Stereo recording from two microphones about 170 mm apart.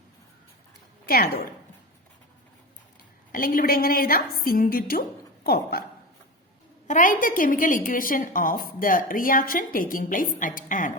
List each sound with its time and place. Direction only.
1.0 s a woman's voice: 60° left (ahead or behind)
3.3 s a woman's voice: 55° left (ahead or behind)
6.8 s a woman's voice: 50° left (ahead or behind)